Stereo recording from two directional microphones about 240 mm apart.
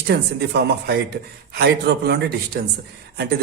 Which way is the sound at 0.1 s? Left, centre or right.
Right.